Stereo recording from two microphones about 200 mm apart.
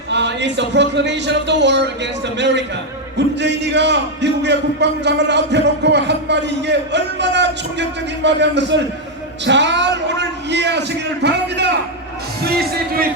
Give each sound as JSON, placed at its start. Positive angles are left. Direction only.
{"t": 0.1, "sound": "a man's voice", "side_deg": -60}